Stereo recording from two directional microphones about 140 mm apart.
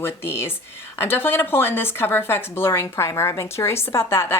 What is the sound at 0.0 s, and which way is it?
Speech, 15° left (ahead or behind).